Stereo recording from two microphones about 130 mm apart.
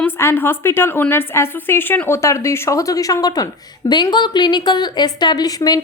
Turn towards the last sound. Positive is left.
turn(degrees=30)  # may be behind; listen again after turning